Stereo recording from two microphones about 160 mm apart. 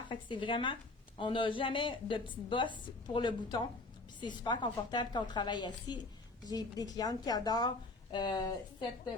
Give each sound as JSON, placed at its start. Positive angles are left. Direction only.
{"t": 0.1, "sound": "a woman's voice", "side_deg": 30}